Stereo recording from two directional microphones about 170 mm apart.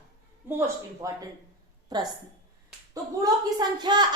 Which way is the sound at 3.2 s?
25° right (ahead or behind).